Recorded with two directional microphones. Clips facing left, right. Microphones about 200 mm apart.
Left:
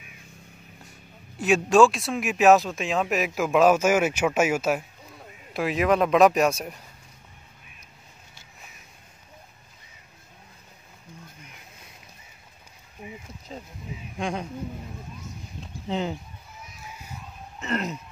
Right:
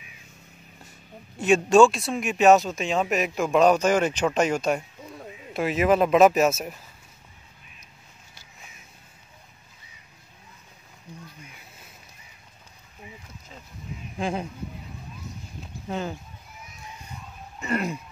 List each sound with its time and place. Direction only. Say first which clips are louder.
1.4 s speech: right 1 dB; centre (ahead or behind)
13.0 s a sound: left 5 dB; 20° left (ahead or behind)
13.5 s speech: left 9 dB; 35° left (ahead or behind)
14.1 s speech: right 2 dB; 5° right (ahead or behind)
15.9 s speech: left 2 dB; 20° left (ahead or behind)
16.8 s a sound: even; 5° left (ahead or behind)
17.6 s speech: right 2 dB; 10° right (ahead or behind)